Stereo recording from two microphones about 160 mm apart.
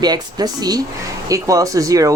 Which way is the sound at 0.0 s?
25° right (ahead or behind).